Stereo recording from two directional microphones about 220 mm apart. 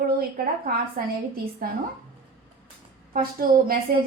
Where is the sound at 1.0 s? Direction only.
40° right (ahead or behind).